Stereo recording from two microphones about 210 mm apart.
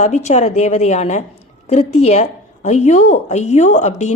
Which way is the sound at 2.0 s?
35° left (ahead or behind).